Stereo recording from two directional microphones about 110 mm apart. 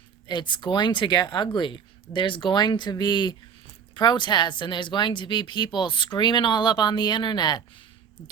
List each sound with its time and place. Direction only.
0.3 s speech: 45° left (ahead or behind)